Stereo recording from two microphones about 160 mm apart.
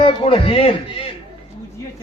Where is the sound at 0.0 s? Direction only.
35° left (ahead or behind).